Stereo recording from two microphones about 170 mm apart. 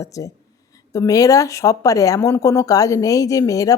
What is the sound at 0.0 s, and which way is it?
A woman's voice, 20° left (ahead or behind).